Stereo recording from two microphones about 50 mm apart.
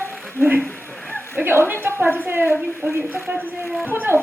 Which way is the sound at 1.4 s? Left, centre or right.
Right.